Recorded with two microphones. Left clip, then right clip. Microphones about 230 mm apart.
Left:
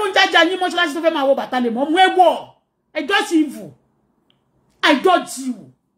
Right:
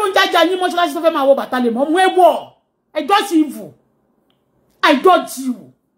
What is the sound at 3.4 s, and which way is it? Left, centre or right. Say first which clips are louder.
Speech: right 1 dB; centre.